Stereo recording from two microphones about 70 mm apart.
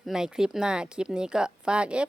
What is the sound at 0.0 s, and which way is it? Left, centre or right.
A woman's voice, centre.